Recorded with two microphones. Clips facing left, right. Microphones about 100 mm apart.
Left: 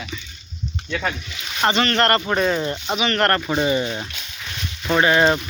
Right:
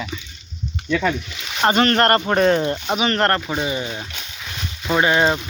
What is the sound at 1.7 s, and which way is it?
Speech, 40° right (ahead or behind).